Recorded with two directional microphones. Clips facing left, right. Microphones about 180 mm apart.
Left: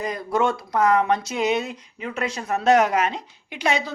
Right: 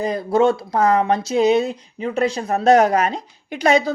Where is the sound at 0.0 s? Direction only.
30° right (ahead or behind).